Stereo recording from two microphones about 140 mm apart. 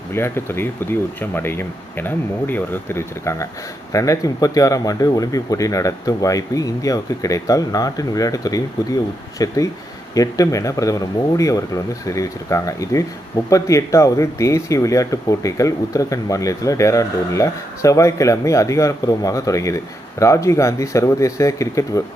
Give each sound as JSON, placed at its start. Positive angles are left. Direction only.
{"t": 0.1, "sound": "speech", "side_deg": 15}